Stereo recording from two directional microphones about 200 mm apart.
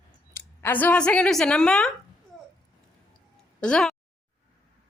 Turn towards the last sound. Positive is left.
turn(degrees=5)  # may be behind; listen again after turning